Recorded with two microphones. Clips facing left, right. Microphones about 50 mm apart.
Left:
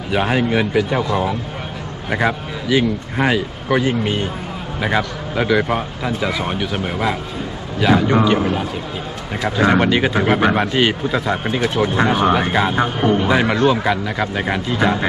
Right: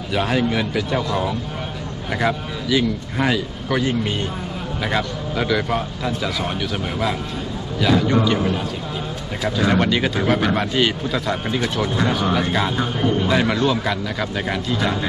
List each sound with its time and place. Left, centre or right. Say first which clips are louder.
0.1 s speech: left 3 dB; left
13.2 s speech: left 2 dB; centre